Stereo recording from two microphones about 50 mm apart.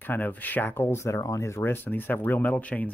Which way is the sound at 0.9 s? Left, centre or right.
Left.